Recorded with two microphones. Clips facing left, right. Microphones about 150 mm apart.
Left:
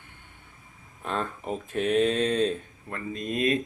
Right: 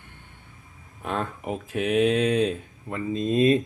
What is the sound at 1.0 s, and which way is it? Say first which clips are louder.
Speech: right 2 dB; 5° right (ahead or behind).